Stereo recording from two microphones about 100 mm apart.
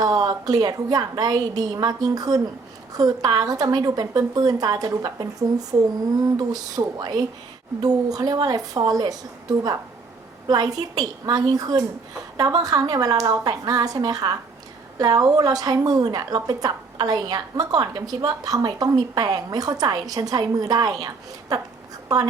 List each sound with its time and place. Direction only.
0.0 s a woman's voice: 40° right (ahead or behind)